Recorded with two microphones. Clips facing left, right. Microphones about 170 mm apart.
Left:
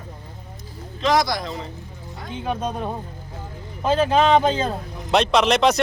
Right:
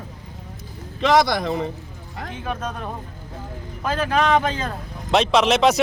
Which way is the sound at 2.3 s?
20° left (ahead or behind).